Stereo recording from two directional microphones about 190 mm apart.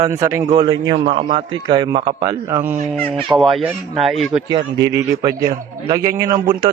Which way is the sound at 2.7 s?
35° right (ahead or behind).